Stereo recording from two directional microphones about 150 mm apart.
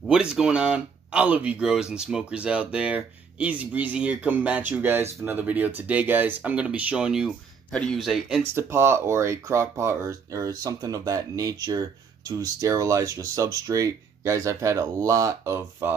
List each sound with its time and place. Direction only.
0.0 s speech: 5° right (ahead or behind)
8.5 s speech: 15° right (ahead or behind)